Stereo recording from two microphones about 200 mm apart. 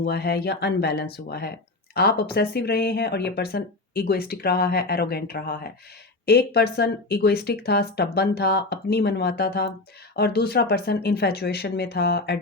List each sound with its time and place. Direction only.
0.0 s speech: 50° left (ahead or behind)